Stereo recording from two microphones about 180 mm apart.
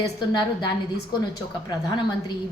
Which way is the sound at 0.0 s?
20° left (ahead or behind).